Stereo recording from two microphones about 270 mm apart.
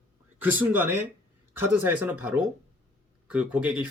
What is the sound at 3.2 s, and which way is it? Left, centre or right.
Speech, centre.